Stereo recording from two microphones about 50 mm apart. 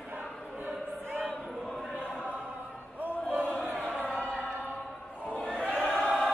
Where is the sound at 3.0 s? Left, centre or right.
Right.